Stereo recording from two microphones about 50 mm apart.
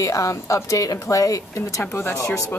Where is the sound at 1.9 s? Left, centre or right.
Left.